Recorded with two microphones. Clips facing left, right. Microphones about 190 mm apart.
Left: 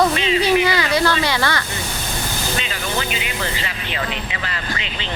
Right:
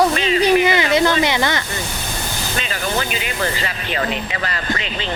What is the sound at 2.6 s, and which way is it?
Speech, 45° right (ahead or behind).